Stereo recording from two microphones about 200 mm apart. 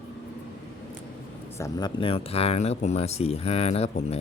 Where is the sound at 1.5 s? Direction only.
15° left (ahead or behind).